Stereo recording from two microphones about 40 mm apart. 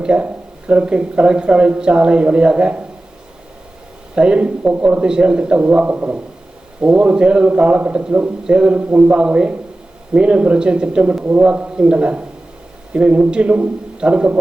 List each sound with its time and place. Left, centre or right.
0.0 s speech: right
4.1 s a man's voice: right
6.8 s a man's voice: right
9.1 s speech: right